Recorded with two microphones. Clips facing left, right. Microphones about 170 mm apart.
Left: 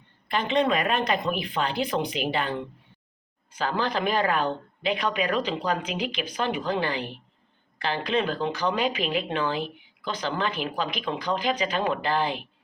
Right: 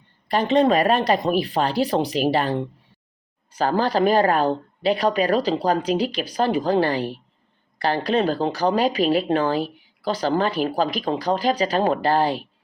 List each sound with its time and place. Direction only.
0.3 s speech: 40° right (ahead or behind)